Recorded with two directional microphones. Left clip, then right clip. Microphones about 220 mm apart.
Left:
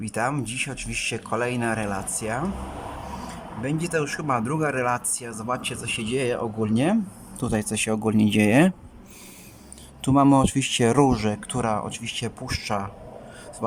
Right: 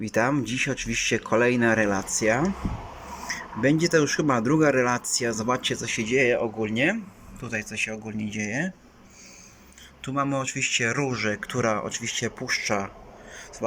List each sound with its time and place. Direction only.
0.1 s speech: 5° left (ahead or behind)
3.8 s speech: centre (ahead or behind); by 8.6 s 35° left (ahead or behind)
10.0 s speech: 25° left (ahead or behind)
11.3 s speech: 10° left (ahead or behind)